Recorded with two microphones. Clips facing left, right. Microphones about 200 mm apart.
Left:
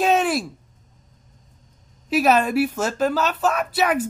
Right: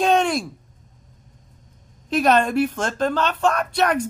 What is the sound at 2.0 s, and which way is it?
Speech, 5° left (ahead or behind).